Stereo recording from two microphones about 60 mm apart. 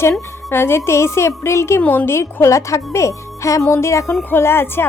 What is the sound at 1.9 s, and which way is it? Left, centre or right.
Speech, left.